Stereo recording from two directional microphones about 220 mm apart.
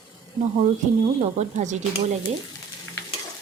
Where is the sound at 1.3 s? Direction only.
35° right (ahead or behind).